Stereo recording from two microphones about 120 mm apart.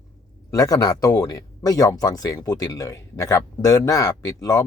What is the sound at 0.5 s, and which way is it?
Speech, 30° left (ahead or behind).